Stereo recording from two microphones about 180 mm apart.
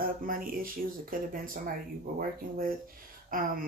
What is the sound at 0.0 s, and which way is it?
Speech, 50° right (ahead or behind).